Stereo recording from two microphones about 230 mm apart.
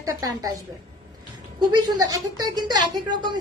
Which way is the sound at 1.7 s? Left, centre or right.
Centre.